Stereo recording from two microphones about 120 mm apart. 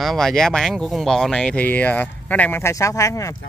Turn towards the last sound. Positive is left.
turn(degrees=25)  # may be behind; listen again after turning